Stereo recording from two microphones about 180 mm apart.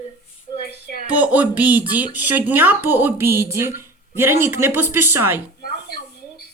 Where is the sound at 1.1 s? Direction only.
10° right (ahead or behind).